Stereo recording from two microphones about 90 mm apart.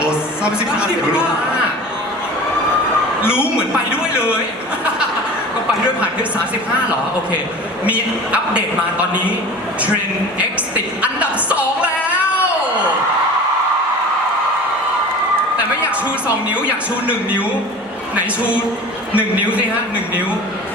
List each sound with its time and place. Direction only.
0.0 s a woman's voice: 10° right (ahead or behind)
3.2 s a woman's voice: 25° left (ahead or behind)
7.9 s speech: 15° right (ahead or behind)
11.0 s a sound: 15° right (ahead or behind)
16.2 s speech: 15° right (ahead or behind)
19.1 s speech: 15° right (ahead or behind)